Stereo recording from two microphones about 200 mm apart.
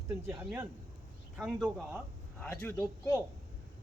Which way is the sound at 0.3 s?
10° right (ahead or behind).